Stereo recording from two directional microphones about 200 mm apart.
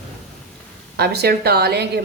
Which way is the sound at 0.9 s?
55° right (ahead or behind).